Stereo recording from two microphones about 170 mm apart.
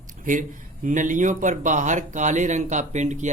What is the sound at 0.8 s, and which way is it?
Speech, 50° right (ahead or behind).